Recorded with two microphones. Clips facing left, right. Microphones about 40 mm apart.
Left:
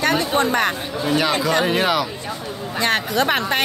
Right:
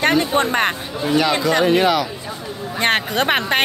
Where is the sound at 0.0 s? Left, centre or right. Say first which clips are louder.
Right 2 dB; right.